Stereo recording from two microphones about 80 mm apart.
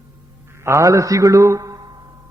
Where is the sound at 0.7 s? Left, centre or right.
Right.